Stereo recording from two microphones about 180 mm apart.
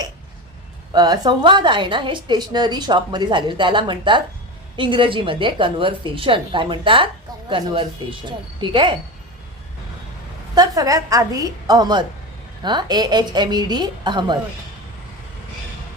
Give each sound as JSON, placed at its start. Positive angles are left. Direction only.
{"t": 0.9, "sound": "a woman's voice", "side_deg": -20}
{"t": 10.5, "sound": "a woman's voice", "side_deg": -20}